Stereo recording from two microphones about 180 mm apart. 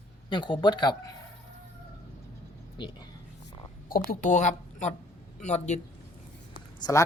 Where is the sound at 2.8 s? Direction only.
25° left (ahead or behind).